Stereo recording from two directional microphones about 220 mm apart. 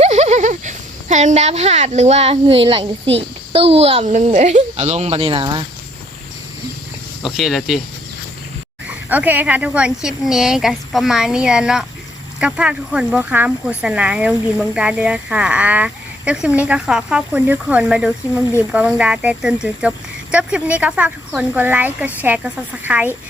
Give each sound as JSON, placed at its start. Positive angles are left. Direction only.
{"t": 0.0, "sound": "a sound", "side_deg": -30}
{"t": 3.2, "sound": "a child's voice", "side_deg": -25}
{"t": 7.2, "sound": "speech", "side_deg": 0}
{"t": 9.0, "sound": "speech", "side_deg": -10}